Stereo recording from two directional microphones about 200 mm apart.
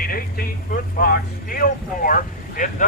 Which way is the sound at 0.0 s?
45° left (ahead or behind).